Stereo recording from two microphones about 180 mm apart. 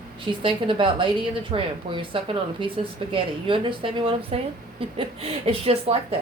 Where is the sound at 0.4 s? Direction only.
30° right (ahead or behind).